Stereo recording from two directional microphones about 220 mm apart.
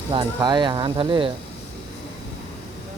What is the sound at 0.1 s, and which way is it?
Speech, 20° right (ahead or behind).